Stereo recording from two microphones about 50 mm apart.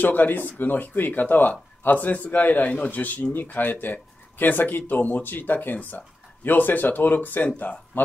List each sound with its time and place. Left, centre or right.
0.0 s speech: left